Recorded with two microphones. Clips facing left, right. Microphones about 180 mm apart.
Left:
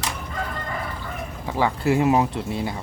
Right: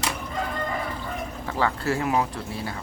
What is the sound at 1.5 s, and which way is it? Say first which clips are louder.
Speech: left 4 dB; 15° left (ahead or behind).